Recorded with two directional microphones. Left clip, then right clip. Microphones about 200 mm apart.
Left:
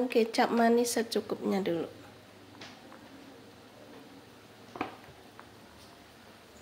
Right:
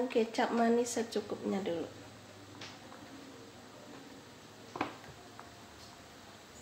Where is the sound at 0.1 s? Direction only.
55° left (ahead or behind).